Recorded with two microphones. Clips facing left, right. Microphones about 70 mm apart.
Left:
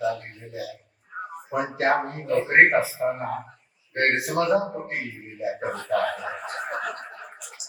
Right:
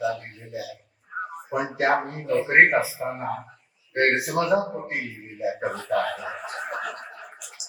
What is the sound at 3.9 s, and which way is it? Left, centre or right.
Speech, centre.